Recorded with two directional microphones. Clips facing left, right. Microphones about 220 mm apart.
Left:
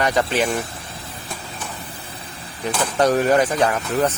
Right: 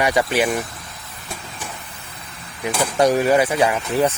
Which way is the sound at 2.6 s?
10° right (ahead or behind).